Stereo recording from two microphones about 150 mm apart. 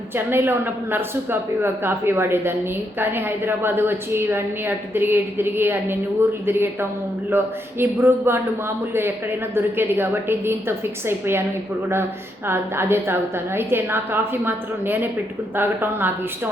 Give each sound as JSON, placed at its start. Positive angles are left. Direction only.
{"t": 0.3, "sound": "a woman's voice", "side_deg": -15}
{"t": 12.5, "sound": "a woman's voice", "side_deg": -15}